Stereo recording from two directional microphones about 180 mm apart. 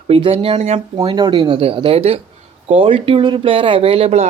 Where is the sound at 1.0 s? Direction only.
25° right (ahead or behind).